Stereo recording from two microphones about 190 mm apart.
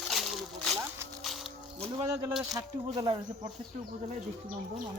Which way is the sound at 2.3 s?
Centre (ahead or behind).